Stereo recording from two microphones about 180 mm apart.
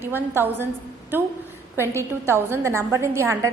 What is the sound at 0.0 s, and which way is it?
A woman's voice, 10° right (ahead or behind).